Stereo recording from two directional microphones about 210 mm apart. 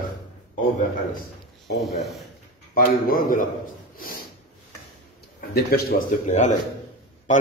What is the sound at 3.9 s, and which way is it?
Snort, 45° left (ahead or behind).